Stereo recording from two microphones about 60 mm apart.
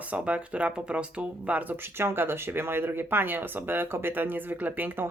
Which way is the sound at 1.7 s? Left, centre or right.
Right.